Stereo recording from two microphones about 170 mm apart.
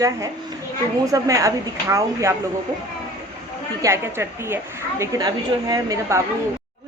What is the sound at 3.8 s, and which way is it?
A woman's voice, 15° right (ahead or behind).